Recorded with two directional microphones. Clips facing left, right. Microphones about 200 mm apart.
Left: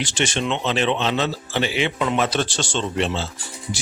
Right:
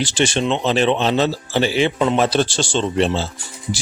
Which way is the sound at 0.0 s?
30° right (ahead or behind).